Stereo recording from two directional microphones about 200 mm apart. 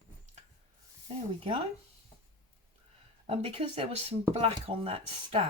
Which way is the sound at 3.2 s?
30° right (ahead or behind).